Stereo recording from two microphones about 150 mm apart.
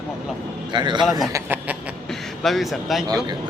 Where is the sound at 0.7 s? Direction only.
30° right (ahead or behind).